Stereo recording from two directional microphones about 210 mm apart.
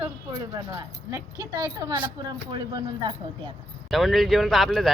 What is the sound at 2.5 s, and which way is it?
Speech, 20° right (ahead or behind).